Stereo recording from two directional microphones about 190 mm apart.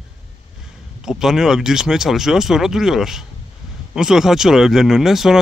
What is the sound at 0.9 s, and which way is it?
Speech, centre (ahead or behind).